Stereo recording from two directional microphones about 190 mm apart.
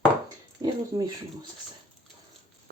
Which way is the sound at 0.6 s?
20° right (ahead or behind).